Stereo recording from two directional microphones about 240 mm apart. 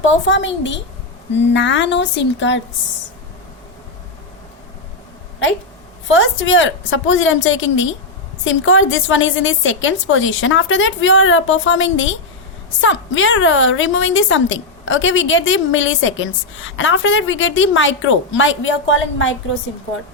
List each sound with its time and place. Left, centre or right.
0.0 s a woman's voice: left
6.1 s a woman's voice: left